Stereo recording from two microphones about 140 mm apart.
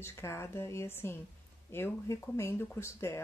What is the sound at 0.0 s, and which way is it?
Speech, 20° left (ahead or behind).